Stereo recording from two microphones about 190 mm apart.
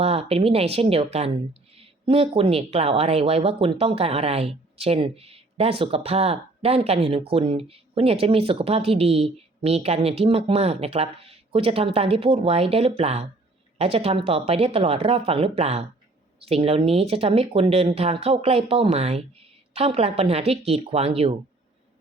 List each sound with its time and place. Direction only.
0.0 s speech: 30° right (ahead or behind)